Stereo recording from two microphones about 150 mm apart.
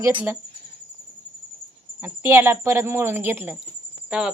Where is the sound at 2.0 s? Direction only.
15° right (ahead or behind).